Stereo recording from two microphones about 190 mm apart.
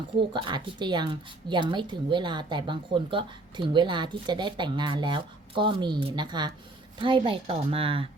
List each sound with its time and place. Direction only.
0.2 s a woman's voice: 25° right (ahead or behind)